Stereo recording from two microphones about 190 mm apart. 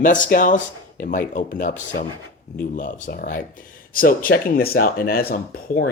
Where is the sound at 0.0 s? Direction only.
45° left (ahead or behind).